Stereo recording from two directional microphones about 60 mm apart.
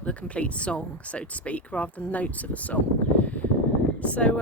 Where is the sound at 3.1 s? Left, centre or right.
Left.